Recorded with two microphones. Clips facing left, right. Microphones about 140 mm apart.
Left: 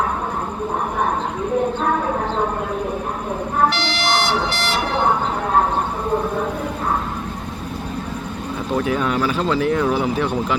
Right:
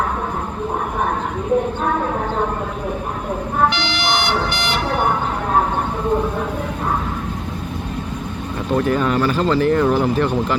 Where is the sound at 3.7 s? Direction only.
40° left (ahead or behind).